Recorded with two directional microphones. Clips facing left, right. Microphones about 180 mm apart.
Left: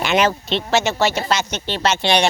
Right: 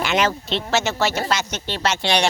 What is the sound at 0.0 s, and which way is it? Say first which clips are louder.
Speech: left 3 dB; 20° left (ahead or behind).